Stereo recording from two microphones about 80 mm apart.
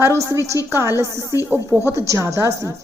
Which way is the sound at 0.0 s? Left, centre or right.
Right.